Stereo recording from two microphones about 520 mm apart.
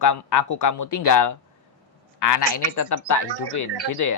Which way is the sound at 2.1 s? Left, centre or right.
Left.